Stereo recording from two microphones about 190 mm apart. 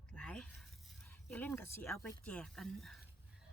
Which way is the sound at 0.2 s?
5° left (ahead or behind).